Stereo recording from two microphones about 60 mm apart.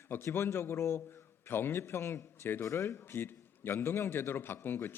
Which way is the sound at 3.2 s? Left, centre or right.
Left.